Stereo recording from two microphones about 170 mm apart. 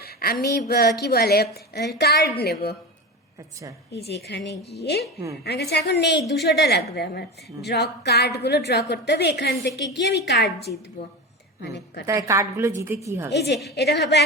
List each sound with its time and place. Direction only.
0.0 s a sound: 65° left (ahead or behind)
0.4 s a woman's voice: 65° left (ahead or behind)
3.9 s a woman's voice: 75° left (ahead or behind)
12.0 s a woman's voice: 20° right (ahead or behind)
13.3 s a woman's voice: 80° left